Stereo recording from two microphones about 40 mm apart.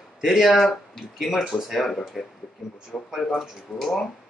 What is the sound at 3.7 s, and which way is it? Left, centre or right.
Speech, centre.